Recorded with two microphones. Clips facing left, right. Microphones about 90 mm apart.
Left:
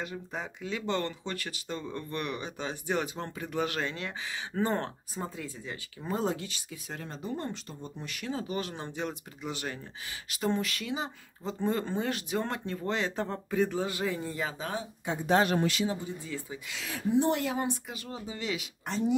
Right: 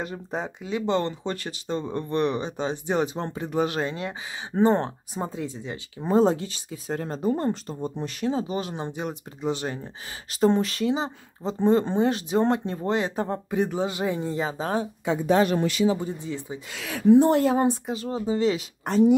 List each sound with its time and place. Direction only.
0.0 s speech: 35° right (ahead or behind)
0.6 s speech: 20° right (ahead or behind); by 7.9 s 40° right (ahead or behind)
8.0 s speech: 30° right (ahead or behind)
16.2 s speech: 20° right (ahead or behind)
16.7 s speech: 65° right (ahead or behind)
17.2 s speech: 40° right (ahead or behind)
18.9 s speech: 55° right (ahead or behind)